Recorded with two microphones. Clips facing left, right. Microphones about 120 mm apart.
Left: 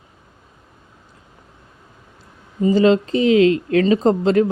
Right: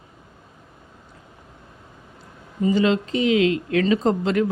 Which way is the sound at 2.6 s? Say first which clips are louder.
Left 5 dB; 35° left (ahead or behind).